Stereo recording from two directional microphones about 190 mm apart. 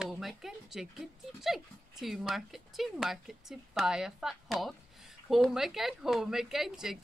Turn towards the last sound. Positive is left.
turn(degrees=0)  # may be behind; listen again after turning